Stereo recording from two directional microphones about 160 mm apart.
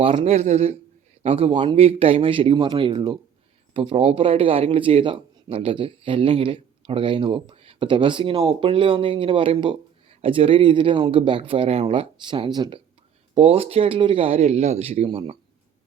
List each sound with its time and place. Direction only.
0.0 s speech: 40° right (ahead or behind)
13.3 s speech: 35° right (ahead or behind)